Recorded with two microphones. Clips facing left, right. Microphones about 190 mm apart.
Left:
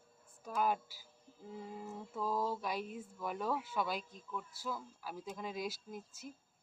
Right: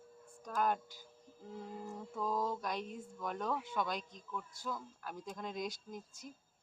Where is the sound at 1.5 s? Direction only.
Centre (ahead or behind).